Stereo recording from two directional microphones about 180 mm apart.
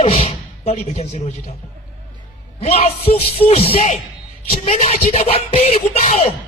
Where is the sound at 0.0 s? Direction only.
30° left (ahead or behind).